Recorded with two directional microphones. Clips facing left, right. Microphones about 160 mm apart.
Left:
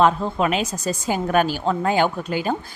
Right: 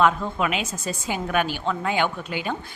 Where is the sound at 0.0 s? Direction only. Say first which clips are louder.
Left 3 dB; 35° left (ahead or behind).